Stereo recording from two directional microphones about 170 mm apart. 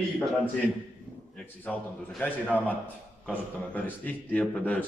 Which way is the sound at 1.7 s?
10° left (ahead or behind).